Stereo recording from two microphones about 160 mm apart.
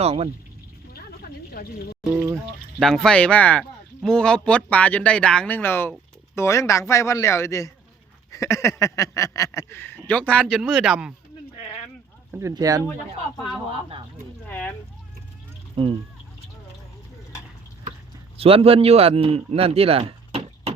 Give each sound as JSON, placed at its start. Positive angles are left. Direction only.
{"t": 0.0, "sound": "speech", "side_deg": -40}
{"t": 2.1, "sound": "a sound", "side_deg": -20}
{"t": 2.7, "sound": "speech", "side_deg": 0}
{"t": 10.4, "sound": "speech", "side_deg": -5}
{"t": 12.3, "sound": "speech", "side_deg": -20}
{"t": 14.4, "sound": "speech", "side_deg": 10}
{"t": 15.7, "sound": "speech", "side_deg": -35}
{"t": 18.3, "sound": "a man's voice", "side_deg": -35}